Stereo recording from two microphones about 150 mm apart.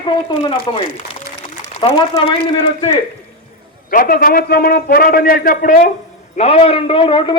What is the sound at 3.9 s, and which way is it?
A man's voice, 70° left (ahead or behind).